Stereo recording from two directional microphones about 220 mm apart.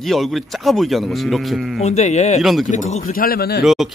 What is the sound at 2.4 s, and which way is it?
Speech, centre (ahead or behind).